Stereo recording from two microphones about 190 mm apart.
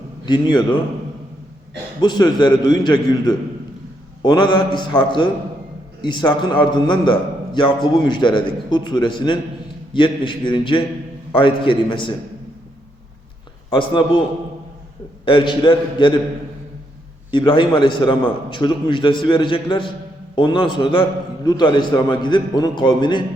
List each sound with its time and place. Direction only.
0.3 s a man's voice: 25° left (ahead or behind)
2.0 s a man's voice: 20° left (ahead or behind)
13.7 s a man's voice: 25° left (ahead or behind)
15.2 s a man's voice: 25° left (ahead or behind)
17.3 s a man's voice: 25° left (ahead or behind)